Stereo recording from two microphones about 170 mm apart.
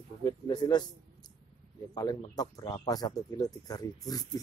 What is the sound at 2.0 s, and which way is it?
A man's voice, 20° left (ahead or behind).